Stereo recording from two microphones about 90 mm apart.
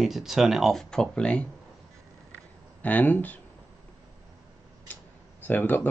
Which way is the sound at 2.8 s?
20° left (ahead or behind).